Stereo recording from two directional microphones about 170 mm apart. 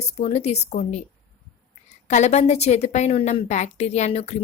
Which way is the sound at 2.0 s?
40° left (ahead or behind).